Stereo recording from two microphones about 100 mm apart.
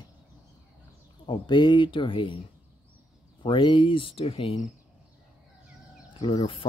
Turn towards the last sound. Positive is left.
turn(degrees=75)  # may be behind; listen again after turning